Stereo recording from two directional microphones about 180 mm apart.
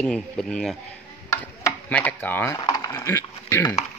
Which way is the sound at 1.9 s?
10° left (ahead or behind).